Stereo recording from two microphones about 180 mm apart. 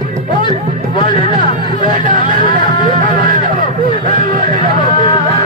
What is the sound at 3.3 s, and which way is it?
Hubbub, 50° right (ahead or behind).